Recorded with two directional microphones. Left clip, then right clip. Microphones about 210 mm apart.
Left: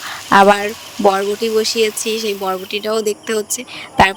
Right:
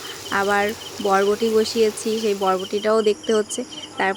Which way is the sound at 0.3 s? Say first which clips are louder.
Left 10 dB; 45° left (ahead or behind).